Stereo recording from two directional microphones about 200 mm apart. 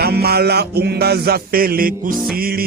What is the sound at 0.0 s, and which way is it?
Music, 50° right (ahead or behind).